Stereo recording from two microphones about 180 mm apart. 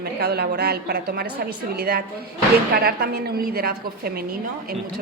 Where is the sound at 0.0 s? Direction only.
60° right (ahead or behind).